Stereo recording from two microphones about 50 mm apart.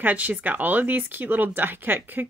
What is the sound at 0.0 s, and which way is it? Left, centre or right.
Speech, right.